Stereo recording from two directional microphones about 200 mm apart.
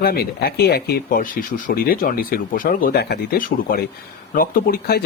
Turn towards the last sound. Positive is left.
turn(degrees=50)  # may be behind; listen again after turning